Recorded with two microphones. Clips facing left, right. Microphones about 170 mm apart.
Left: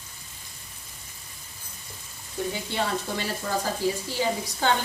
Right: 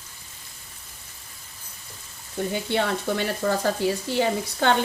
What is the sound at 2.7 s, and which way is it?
Speech, 65° right (ahead or behind).